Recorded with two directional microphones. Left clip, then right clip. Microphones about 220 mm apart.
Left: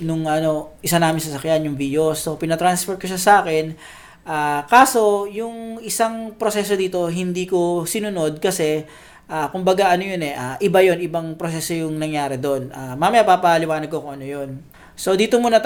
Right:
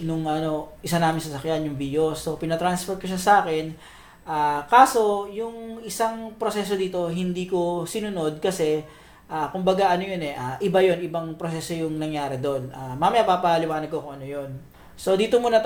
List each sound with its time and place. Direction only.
0.1 s speech: 40° left (ahead or behind)